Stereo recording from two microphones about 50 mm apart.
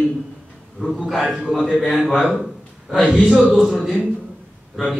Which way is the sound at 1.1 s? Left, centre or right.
Centre.